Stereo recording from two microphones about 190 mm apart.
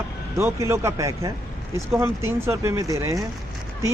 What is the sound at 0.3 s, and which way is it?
Speech, 15° right (ahead or behind).